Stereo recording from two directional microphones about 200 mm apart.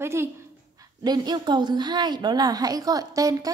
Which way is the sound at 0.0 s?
10° right (ahead or behind).